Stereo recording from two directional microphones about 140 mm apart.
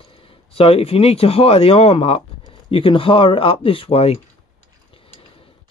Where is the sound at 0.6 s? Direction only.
45° left (ahead or behind).